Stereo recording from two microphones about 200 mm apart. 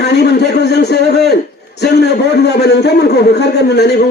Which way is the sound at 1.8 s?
55° left (ahead or behind).